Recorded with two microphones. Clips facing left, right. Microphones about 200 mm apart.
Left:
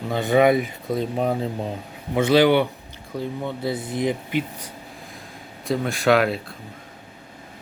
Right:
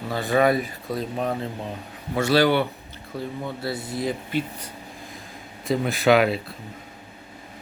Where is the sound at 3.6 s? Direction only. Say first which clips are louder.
Left 4 dB; 20° left (ahead or behind).